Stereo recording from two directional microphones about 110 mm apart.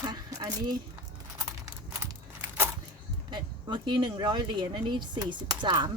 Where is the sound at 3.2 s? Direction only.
45° right (ahead or behind).